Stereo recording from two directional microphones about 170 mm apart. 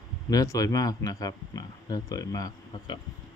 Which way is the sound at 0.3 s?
20° left (ahead or behind).